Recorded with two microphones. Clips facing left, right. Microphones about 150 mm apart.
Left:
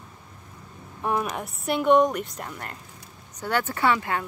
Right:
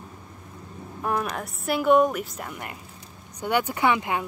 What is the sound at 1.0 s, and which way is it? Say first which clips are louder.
Speech: left 1 dB; 5° left (ahead or behind).